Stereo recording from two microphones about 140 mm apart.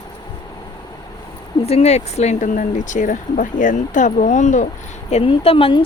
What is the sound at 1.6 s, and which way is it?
Speech, 50° left (ahead or behind).